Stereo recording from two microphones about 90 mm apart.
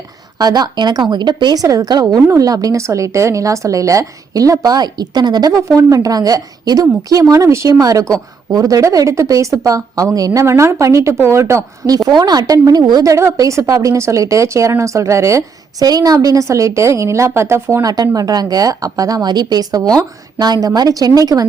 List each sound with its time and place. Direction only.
0.3 s a woman's voice: 45° right (ahead or behind)
1.6 s a woman's voice: 40° right (ahead or behind)
2.2 s a woman's voice: 35° right (ahead or behind)
12.0 s a woman's voice: 50° right (ahead or behind); by 17.8 s 30° right (ahead or behind)
17.8 s a woman's voice: 45° right (ahead or behind)